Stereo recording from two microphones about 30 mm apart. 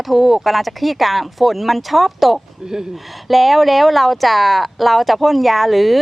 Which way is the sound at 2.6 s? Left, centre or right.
Centre.